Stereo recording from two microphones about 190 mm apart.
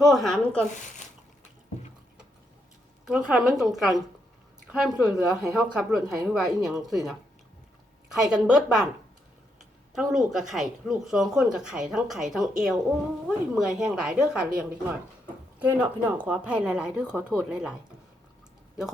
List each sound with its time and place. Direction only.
0.0 s speech: centre (ahead or behind)
3.1 s speech: 5° right (ahead or behind)
9.9 s speech: centre (ahead or behind)
15.5 s speech: 10° right (ahead or behind)